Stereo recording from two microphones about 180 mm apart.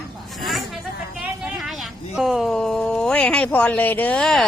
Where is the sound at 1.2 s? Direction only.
5° right (ahead or behind).